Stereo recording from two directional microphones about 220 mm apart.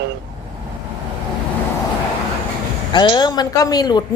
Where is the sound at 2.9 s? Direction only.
20° left (ahead or behind).